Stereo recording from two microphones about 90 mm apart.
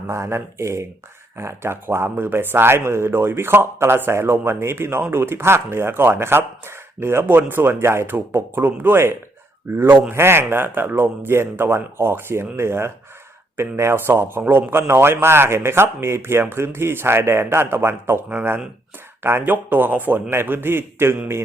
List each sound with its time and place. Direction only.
0.1 s a man's voice: 30° right (ahead or behind)